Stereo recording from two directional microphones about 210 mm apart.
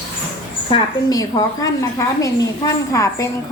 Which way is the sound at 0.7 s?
15° left (ahead or behind).